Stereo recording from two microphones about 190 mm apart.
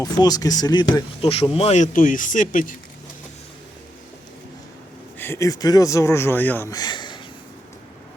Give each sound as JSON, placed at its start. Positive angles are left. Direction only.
{"t": 0.0, "sound": "speech", "side_deg": 20}
{"t": 5.1, "sound": "speech", "side_deg": 10}